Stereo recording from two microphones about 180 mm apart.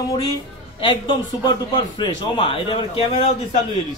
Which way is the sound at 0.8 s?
25° left (ahead or behind).